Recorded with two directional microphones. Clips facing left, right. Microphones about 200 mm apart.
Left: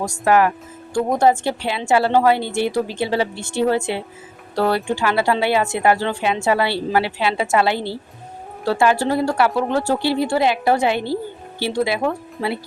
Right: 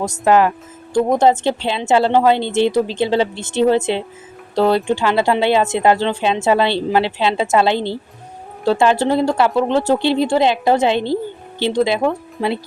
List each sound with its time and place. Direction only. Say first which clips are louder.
0.0 s a woman's voice: right 2 dB; 20° right (ahead or behind)